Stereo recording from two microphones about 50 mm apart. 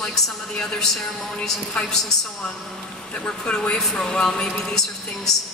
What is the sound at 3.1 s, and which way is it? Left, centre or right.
Speech, left.